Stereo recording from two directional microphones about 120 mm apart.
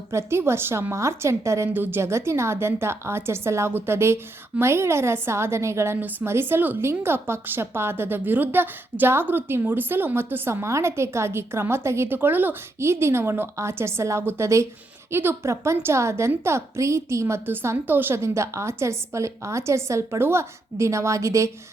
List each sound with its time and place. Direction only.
0.1 s a woman's voice: 20° right (ahead or behind)